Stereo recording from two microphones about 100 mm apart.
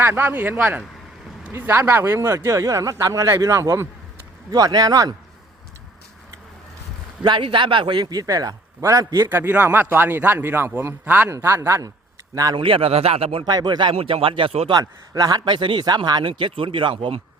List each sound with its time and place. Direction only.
0.0 s speech: 20° right (ahead or behind); by 5.1 s 40° right (ahead or behind)
7.2 s speech: 50° right (ahead or behind)
9.3 s speech: 20° right (ahead or behind)
11.3 s speech: 25° right (ahead or behind)
12.3 s speech: 35° right (ahead or behind)
12.5 s speech: 60° right (ahead or behind); by 13.4 s 80° right
13.4 s speech: 45° right (ahead or behind)
13.9 s speech: 70° right (ahead or behind)
14.7 s speech: 40° right (ahead or behind); by 17.2 s 60° right (ahead or behind)